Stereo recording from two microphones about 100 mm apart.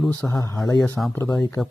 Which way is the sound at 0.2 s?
30° left (ahead or behind).